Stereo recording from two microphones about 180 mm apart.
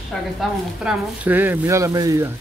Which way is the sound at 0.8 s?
10° right (ahead or behind).